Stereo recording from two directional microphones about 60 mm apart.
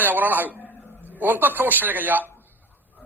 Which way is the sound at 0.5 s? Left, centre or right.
Left.